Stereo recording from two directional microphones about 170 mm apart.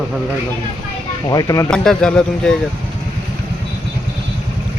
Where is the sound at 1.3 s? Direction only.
20° left (ahead or behind).